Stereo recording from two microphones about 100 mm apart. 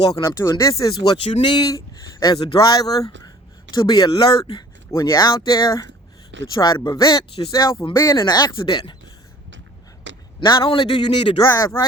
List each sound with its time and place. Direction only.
0.3 s speech: 35° left (ahead or behind)
1.1 s speech: 55° left (ahead or behind)
1.6 s speech: 40° left (ahead or behind)
4.2 s speech: 55° left (ahead or behind)
4.9 s speech: 35° left (ahead or behind)
5.3 s speech: 45° left (ahead or behind)
6.9 s speech: 40° left (ahead or behind)
10.4 s a man's voice: 55° left (ahead or behind)
11.4 s speech: 30° left (ahead or behind)